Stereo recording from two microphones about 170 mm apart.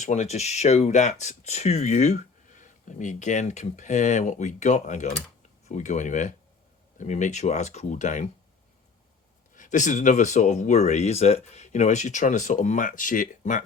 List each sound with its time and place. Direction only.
0.0 s speech: 45° left (ahead or behind)
9.6 s speech: 45° left (ahead or behind)